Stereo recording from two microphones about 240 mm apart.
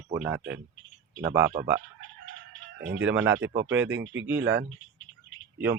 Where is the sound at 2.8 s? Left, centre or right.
Right.